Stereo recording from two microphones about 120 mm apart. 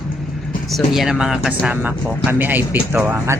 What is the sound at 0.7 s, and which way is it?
Speech, 5° right (ahead or behind).